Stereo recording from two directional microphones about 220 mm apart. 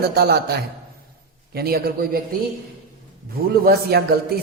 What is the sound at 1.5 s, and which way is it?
Speech, 45° right (ahead or behind).